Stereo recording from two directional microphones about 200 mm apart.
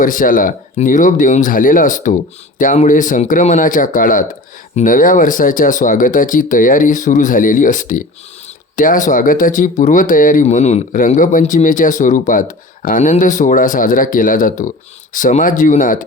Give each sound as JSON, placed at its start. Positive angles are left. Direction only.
{"t": 0.0, "sound": "speech", "side_deg": 40}